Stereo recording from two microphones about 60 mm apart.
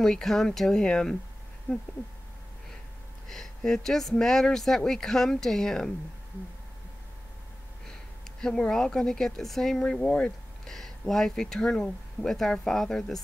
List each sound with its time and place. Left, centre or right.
0.0 s speech: centre
3.3 s speech: centre
7.9 s speech: centre